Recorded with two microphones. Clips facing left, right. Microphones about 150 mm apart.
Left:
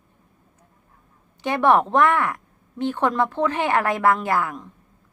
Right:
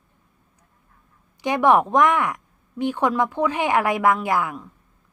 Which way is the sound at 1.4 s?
15° right (ahead or behind).